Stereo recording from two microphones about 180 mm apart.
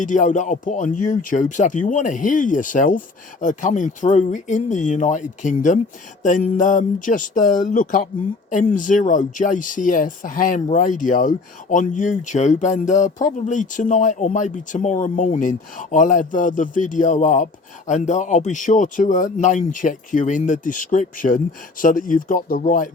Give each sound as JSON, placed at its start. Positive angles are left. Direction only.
{"t": 0.0, "sound": "speech", "side_deg": 45}